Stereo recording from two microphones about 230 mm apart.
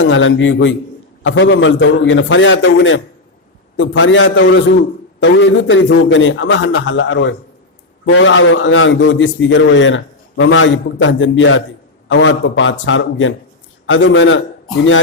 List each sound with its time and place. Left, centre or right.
0.0 s a man's voice: left